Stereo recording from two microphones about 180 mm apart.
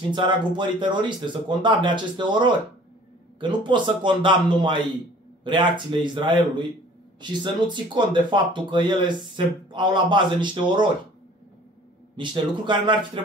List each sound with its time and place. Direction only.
0.1 s speech: 25° right (ahead or behind)
12.2 s speech: 25° right (ahead or behind)